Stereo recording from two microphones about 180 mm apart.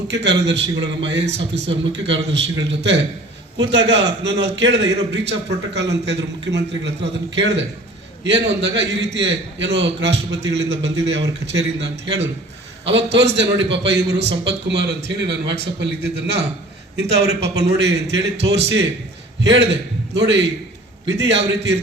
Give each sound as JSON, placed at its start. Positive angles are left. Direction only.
{"t": 0.1, "sound": "a man's voice", "side_deg": -75}
{"t": 1.9, "sound": "a man's voice", "side_deg": -90}
{"t": 2.6, "sound": "a man's voice", "side_deg": -75}